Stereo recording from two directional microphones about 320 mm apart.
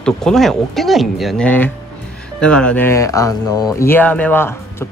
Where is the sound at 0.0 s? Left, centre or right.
Centre.